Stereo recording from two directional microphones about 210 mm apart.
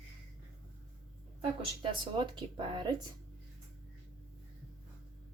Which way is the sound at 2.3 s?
20° right (ahead or behind).